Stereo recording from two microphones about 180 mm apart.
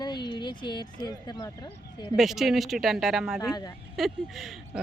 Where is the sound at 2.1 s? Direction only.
Centre (ahead or behind).